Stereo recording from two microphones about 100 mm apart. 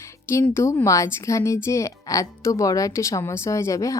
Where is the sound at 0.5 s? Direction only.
25° left (ahead or behind).